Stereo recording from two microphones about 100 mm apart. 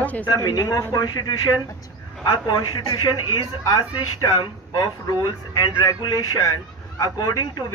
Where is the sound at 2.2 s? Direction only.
60° left (ahead or behind).